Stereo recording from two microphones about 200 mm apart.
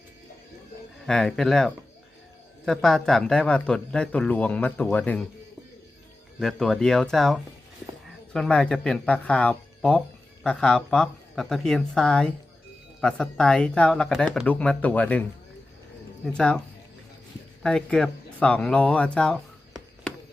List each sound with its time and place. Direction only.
1.0 s speech: centre (ahead or behind)
6.4 s speech: centre (ahead or behind)
16.2 s speech: 5° left (ahead or behind)
17.6 s speech: 5° left (ahead or behind)